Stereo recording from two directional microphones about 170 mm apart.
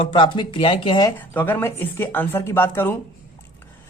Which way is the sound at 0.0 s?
30° left (ahead or behind).